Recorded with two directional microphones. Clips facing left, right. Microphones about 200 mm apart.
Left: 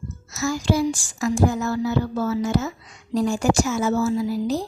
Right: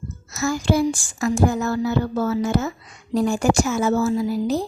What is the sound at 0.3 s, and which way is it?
A woman's voice, 55° right (ahead or behind).